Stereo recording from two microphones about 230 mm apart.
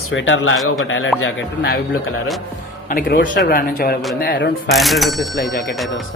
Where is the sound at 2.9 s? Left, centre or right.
Left.